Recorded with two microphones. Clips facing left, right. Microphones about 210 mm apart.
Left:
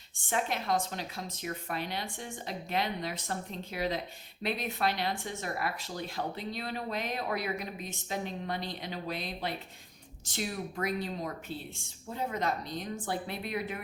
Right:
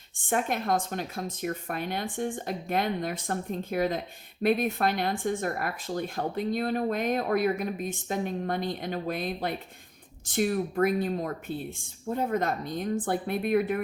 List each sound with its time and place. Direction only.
0.3 s speech: 50° right (ahead or behind)